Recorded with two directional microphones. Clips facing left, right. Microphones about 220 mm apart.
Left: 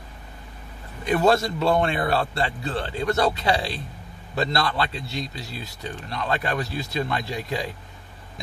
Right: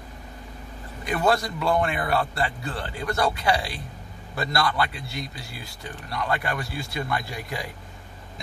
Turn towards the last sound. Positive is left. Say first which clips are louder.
# left 5 dB
turn(degrees=25)  # may be behind; listen again after turning